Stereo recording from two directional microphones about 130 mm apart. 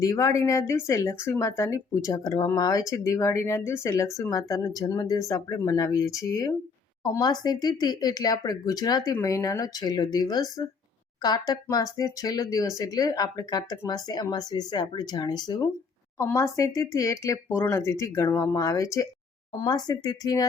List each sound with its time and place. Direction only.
0.0 s speech: 25° left (ahead or behind)